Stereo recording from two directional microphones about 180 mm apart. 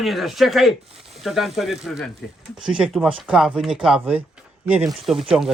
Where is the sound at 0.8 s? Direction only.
35° right (ahead or behind).